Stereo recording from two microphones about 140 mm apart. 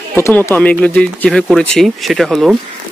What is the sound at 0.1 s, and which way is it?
Speech, 15° left (ahead or behind).